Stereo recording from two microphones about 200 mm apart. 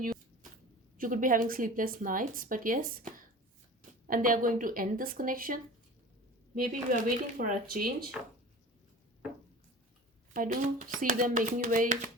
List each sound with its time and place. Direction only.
0.9 s a woman's voice: 40° right (ahead or behind)
10.3 s a woman's voice: 40° right (ahead or behind)